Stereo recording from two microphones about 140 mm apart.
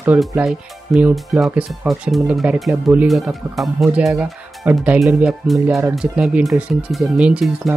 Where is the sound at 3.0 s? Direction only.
Centre (ahead or behind).